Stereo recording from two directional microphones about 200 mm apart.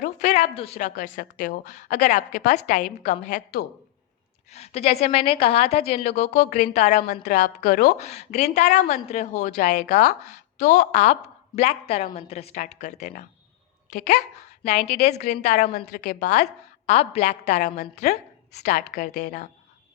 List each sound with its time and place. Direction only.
0.0 s a woman's voice: 35° left (ahead or behind)